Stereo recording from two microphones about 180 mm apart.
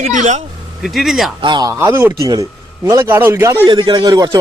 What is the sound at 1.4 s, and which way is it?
A man's voice, 25° right (ahead or behind).